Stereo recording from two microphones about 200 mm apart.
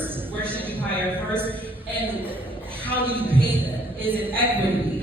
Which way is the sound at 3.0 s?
10° right (ahead or behind).